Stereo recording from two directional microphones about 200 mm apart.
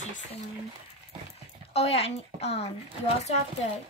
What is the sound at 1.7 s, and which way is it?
Speech, 30° left (ahead or behind).